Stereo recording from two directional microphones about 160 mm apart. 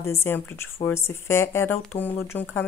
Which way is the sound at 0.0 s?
15° left (ahead or behind).